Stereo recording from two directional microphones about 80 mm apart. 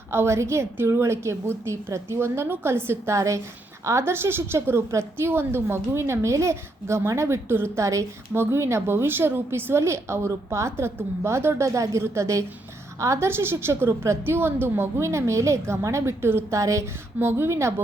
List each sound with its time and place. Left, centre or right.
0.1 s a woman's voice: right
17.2 s a woman's voice: right